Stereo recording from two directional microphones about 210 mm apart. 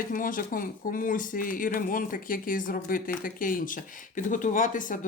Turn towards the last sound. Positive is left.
turn(degrees=40)  # may be behind; listen again after turning